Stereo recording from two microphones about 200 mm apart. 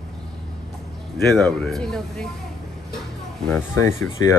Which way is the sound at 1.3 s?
Centre (ahead or behind).